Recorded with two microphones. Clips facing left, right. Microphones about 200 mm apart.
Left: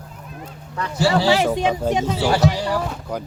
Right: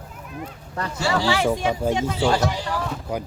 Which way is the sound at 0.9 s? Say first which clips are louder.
Left 5 dB; 25° left (ahead or behind).